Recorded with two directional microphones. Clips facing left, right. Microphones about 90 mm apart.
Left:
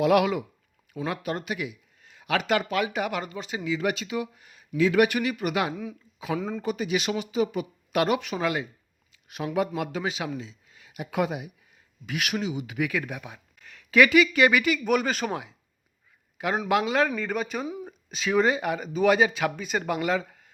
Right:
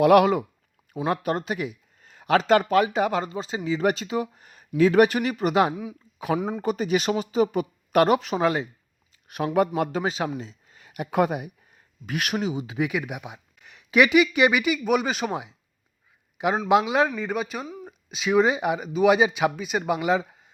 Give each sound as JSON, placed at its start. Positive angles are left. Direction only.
{"t": 0.0, "sound": "speech", "side_deg": -50}
{"t": 5.7, "sound": "speech", "side_deg": -15}
{"t": 6.3, "sound": "a man's voice", "side_deg": -25}
{"t": 6.6, "sound": "speech", "side_deg": -40}
{"t": 9.2, "sound": "a man's voice", "side_deg": -50}
{"t": 16.6, "sound": "a man's voice", "side_deg": -20}
{"t": 17.2, "sound": "speech", "side_deg": -10}